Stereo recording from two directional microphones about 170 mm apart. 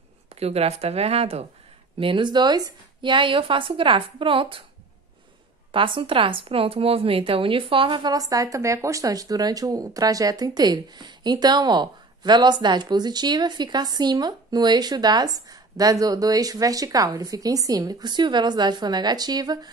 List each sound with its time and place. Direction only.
0.3 s speech: 35° right (ahead or behind)
5.7 s speech: 30° right (ahead or behind)